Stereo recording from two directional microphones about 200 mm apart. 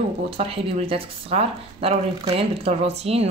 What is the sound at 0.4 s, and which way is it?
Speech, 30° right (ahead or behind).